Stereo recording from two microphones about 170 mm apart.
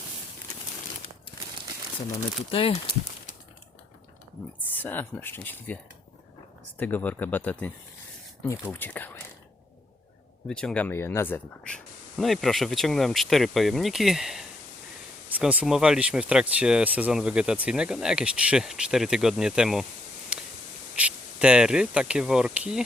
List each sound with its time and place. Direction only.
2.5 s speech: 30° left (ahead or behind)
4.7 s speech: 10° left (ahead or behind)
10.5 s speech: 5° left (ahead or behind)
20.3 s a sound: 5° right (ahead or behind)
20.9 s speech: 5° right (ahead or behind)